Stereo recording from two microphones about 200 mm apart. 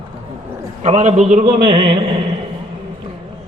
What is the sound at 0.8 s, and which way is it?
Speech, 35° right (ahead or behind).